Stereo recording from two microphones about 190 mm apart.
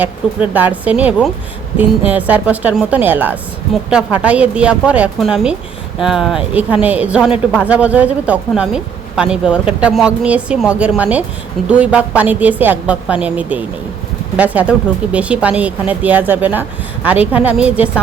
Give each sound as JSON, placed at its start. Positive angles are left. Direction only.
{"t": 0.0, "sound": "speech", "side_deg": -10}